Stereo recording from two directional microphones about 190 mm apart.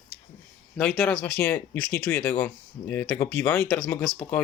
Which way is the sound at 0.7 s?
5° left (ahead or behind).